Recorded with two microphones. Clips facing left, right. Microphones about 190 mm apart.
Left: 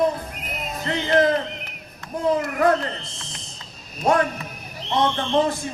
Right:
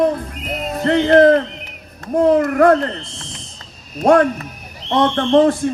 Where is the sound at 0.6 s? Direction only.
55° right (ahead or behind).